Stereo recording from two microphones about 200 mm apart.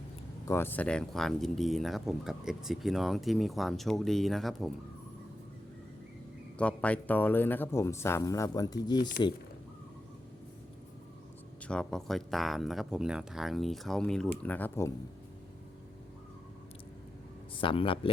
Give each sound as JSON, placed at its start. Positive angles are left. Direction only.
{"t": 0.4, "sound": "speech", "side_deg": 10}
{"t": 6.6, "sound": "speech", "side_deg": 5}
{"t": 11.7, "sound": "speech", "side_deg": 5}
{"t": 17.6, "sound": "speech", "side_deg": 25}